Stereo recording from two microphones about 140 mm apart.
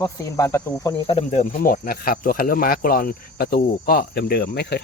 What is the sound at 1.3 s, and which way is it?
Speech, 70° left (ahead or behind).